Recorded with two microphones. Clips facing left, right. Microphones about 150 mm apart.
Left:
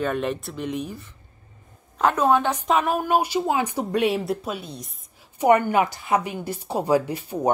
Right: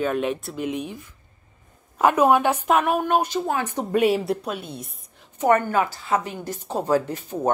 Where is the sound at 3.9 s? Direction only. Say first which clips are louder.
Right 3 dB; centre (ahead or behind).